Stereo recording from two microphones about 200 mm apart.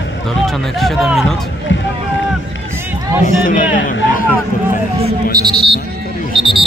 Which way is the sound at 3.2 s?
40° left (ahead or behind).